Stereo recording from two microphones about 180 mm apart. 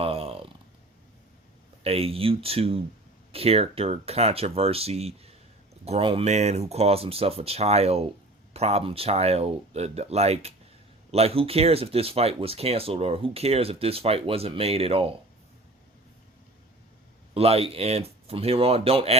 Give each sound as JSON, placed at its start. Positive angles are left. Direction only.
{"t": 0.0, "sound": "a sound", "side_deg": -30}
{"t": 1.8, "sound": "speech", "side_deg": -35}
{"t": 17.3, "sound": "speech", "side_deg": -35}